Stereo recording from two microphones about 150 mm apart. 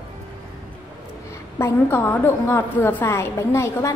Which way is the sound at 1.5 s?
15° left (ahead or behind).